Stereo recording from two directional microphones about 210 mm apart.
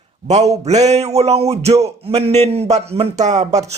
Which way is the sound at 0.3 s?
30° right (ahead or behind).